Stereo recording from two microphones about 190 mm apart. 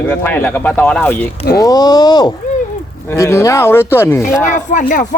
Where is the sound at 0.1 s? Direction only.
10° left (ahead or behind).